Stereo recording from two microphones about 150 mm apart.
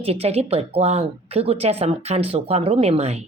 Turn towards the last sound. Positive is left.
turn(degrees=-45)  # may be behind; listen again after turning